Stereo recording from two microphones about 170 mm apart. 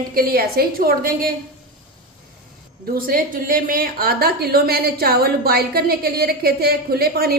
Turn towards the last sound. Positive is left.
turn(degrees=-65)  # may be behind; listen again after turning